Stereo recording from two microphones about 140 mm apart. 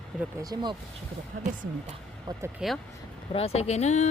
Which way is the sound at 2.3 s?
30° right (ahead or behind).